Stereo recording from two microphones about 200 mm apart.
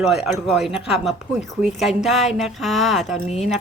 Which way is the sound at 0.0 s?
Centre (ahead or behind).